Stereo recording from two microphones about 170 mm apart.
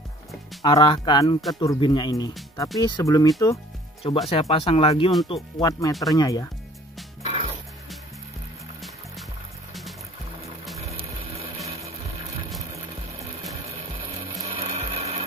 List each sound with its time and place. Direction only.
0.6 s speech: 25° left (ahead or behind)
4.0 s speech: 35° left (ahead or behind)
7.2 s music: 35° right (ahead or behind)
10.9 s music: 35° right (ahead or behind)
14.4 s sewing machine: 35° right (ahead or behind)